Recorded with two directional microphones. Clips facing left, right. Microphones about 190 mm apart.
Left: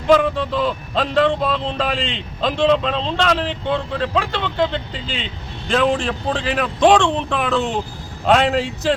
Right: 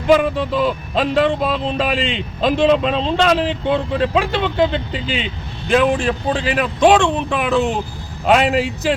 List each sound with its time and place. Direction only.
0.1 s a man's voice: 10° right (ahead or behind)